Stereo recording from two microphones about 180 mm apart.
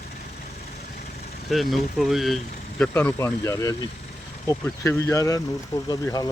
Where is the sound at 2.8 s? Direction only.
10° left (ahead or behind).